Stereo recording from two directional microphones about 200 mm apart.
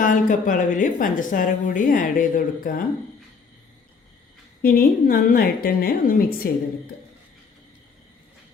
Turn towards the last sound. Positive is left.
turn(degrees=50)  # may be behind; listen again after turning